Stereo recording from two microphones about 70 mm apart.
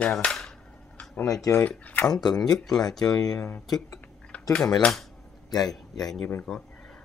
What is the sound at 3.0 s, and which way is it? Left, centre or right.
Speech, left.